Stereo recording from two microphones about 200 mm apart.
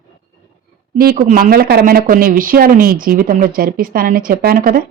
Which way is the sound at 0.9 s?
45° right (ahead or behind).